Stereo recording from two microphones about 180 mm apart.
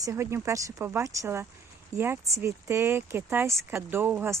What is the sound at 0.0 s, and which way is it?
Speech, 15° right (ahead or behind).